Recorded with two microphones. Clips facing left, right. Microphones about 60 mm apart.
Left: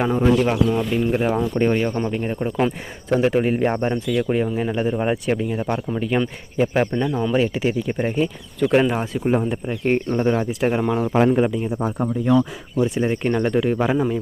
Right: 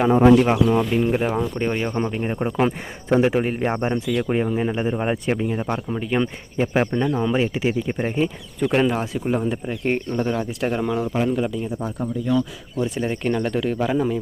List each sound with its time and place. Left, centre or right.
0.3 s speech: centre
3.2 s speech: centre
8.6 s speech: centre
10.2 s speech: centre
13.0 s speech: centre